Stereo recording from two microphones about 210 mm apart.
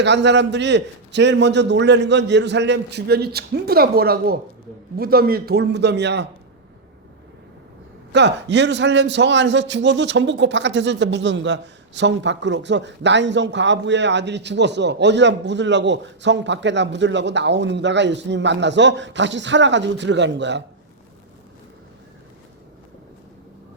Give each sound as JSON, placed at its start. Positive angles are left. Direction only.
{"t": 0.0, "sound": "a man's voice", "side_deg": -55}
{"t": 8.1, "sound": "a man's voice", "side_deg": -55}